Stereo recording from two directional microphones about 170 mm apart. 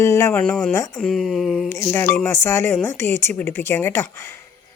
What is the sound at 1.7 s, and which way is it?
Speech, 15° left (ahead or behind).